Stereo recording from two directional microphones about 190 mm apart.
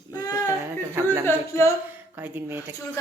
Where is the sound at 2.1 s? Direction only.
10° right (ahead or behind).